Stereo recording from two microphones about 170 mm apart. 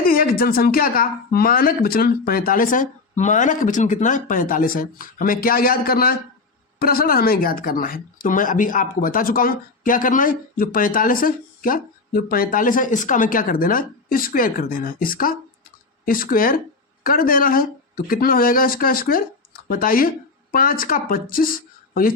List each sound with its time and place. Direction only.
0.0 s speech: 60° left (ahead or behind)